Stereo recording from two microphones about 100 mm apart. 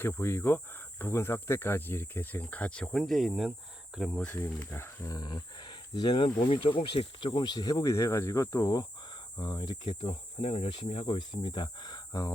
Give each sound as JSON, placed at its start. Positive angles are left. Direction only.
{"t": 0.0, "sound": "speech", "side_deg": 25}
{"t": 3.0, "sound": "speech", "side_deg": 0}
{"t": 4.3, "sound": "speech", "side_deg": 20}
{"t": 5.1, "sound": "speech", "side_deg": 45}
{"t": 6.5, "sound": "speech", "side_deg": 60}
{"t": 10.4, "sound": "speech", "side_deg": 90}
{"t": 11.0, "sound": "speech", "side_deg": 50}